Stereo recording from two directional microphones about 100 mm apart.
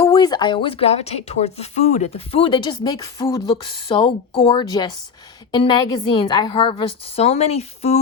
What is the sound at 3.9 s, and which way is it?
Speech, 60° left (ahead or behind).